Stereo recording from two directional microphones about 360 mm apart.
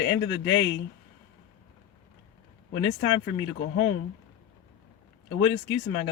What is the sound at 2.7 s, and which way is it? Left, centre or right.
Speech, left.